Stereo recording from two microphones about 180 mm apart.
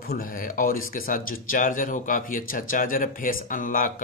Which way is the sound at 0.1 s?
50° left (ahead or behind).